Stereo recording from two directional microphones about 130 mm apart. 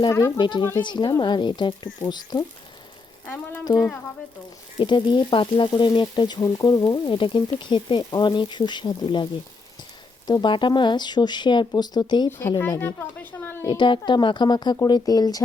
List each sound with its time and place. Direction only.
0.3 s speech: 35° left (ahead or behind)
3.2 s a sound: 15° left (ahead or behind)
3.6 s speech: 30° left (ahead or behind)
10.2 s speech: 35° left (ahead or behind)
12.4 s speech: 20° left (ahead or behind)
13.7 s speech: 40° left (ahead or behind)